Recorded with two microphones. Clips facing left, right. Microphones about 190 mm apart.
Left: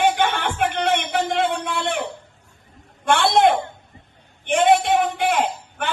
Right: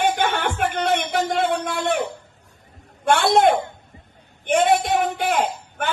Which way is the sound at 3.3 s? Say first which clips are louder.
Even; 40° right (ahead or behind).